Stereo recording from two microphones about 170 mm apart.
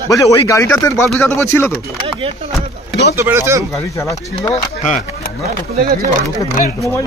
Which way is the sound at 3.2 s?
15° right (ahead or behind).